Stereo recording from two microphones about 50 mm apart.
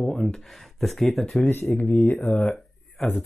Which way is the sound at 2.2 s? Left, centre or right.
Left.